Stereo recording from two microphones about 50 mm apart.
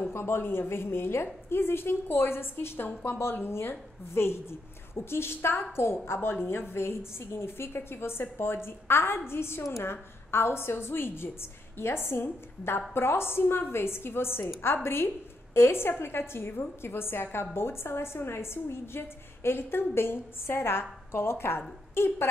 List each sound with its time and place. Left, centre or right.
0.1 s a woman's voice: left